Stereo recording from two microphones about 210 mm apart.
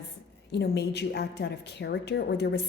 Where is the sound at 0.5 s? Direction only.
55° left (ahead or behind).